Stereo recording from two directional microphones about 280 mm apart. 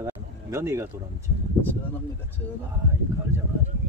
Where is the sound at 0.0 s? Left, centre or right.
Centre.